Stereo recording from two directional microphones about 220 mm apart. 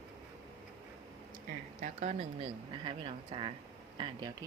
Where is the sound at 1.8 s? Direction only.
35° right (ahead or behind).